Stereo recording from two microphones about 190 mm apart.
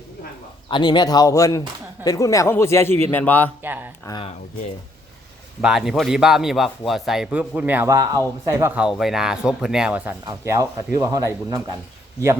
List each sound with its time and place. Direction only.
0.7 s a man's voice: 20° left (ahead or behind)
3.6 s speech: 10° right (ahead or behind)
4.0 s speech: 20° left (ahead or behind)
5.6 s a man's voice: centre (ahead or behind)